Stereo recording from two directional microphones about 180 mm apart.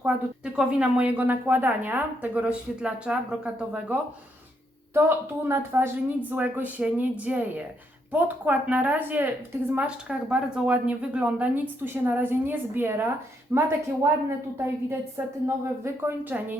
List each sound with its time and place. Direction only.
0.0 s a woman's voice: 5° right (ahead or behind)
4.9 s a woman's voice: 10° right (ahead or behind)